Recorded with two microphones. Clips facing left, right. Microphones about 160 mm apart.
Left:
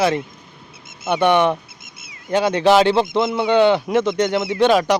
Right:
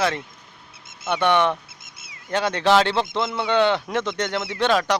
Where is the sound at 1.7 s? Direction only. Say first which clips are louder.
Left 3 dB; 35° right (ahead or behind).